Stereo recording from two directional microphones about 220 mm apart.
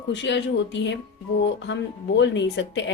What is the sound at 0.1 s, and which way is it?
A woman's voice, 55° left (ahead or behind).